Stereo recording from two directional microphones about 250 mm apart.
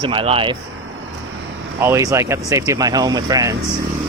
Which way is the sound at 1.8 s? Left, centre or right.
Centre.